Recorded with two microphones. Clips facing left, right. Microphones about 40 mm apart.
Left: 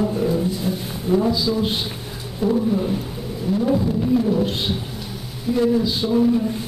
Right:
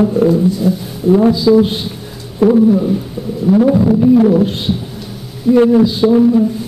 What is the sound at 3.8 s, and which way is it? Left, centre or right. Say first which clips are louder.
Music: right 10 dB; right.